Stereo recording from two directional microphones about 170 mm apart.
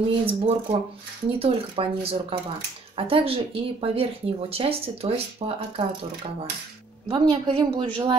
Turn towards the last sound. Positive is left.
turn(degrees=-30)  # may be behind; listen again after turning